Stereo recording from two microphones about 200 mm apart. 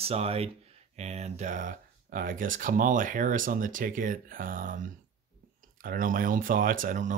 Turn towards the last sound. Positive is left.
turn(degrees=-40)  # may be behind; listen again after turning